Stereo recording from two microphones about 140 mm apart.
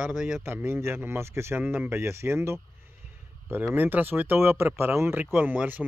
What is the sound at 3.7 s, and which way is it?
Speech, 15° right (ahead or behind).